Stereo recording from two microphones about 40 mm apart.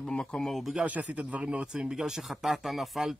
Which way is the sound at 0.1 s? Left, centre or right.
Centre.